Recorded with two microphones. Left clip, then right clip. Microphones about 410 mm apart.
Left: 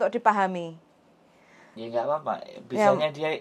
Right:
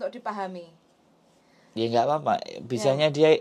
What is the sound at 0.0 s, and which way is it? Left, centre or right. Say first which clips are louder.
Speech: left 9 dB; left.